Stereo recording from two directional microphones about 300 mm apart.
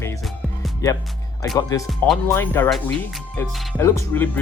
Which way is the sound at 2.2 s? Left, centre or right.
Centre.